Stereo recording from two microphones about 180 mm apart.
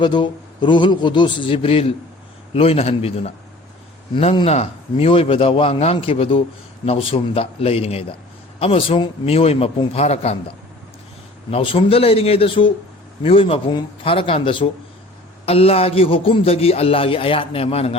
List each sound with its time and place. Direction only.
0.0 s a man's voice: 25° left (ahead or behind)
11.5 s a man's voice: 30° left (ahead or behind)